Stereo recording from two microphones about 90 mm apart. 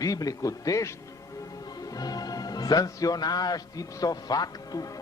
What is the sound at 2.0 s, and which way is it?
A man's voice, 45° left (ahead or behind).